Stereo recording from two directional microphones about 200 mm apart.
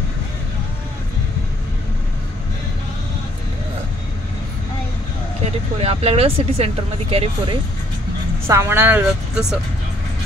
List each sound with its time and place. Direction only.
5.4 s speech: 30° right (ahead or behind)
8.5 s speech: 10° right (ahead or behind)